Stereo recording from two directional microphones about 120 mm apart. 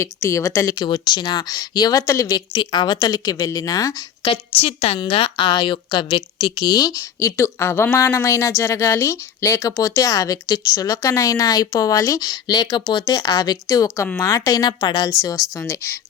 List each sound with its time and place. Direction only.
0.0 s speech: 25° left (ahead or behind)
0.9 s speech: 40° left (ahead or behind)
2.5 s speech: 40° left (ahead or behind)
4.3 s a woman's voice: 55° left (ahead or behind); by 15.1 s 35° left (ahead or behind)
15.5 s speech: 25° left (ahead or behind)